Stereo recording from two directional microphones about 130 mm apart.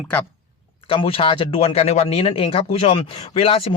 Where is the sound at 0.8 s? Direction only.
45° left (ahead or behind).